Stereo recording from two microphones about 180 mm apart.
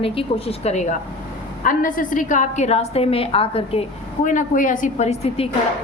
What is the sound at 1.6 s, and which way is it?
A woman's voice, 50° left (ahead or behind).